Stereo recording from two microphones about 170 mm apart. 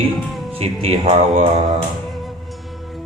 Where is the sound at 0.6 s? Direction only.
35° right (ahead or behind).